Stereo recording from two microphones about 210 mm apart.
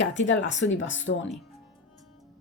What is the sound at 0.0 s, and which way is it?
Speech, 65° left (ahead or behind).